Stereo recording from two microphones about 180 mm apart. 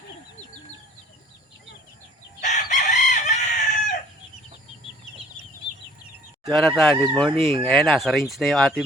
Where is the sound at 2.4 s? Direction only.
40° left (ahead or behind).